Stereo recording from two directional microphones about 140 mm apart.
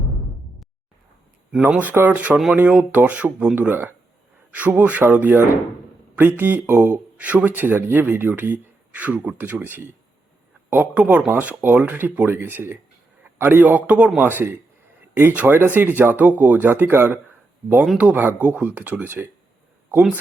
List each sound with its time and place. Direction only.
1.5 s speech: 10° right (ahead or behind)